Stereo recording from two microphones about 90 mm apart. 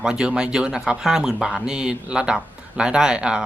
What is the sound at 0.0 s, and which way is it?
Speech, 10° right (ahead or behind).